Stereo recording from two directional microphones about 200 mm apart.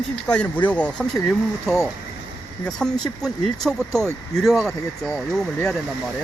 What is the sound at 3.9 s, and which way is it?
Speech, 15° right (ahead or behind).